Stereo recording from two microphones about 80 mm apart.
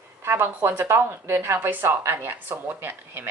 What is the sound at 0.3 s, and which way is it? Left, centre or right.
Speech, right.